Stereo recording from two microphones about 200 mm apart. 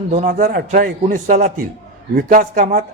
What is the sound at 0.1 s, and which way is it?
A man's voice, 40° right (ahead or behind).